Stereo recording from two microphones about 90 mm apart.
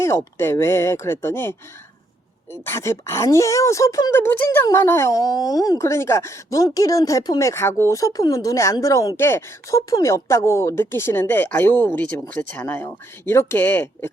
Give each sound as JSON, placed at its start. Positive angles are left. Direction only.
{"t": 0.0, "sound": "speech", "side_deg": 30}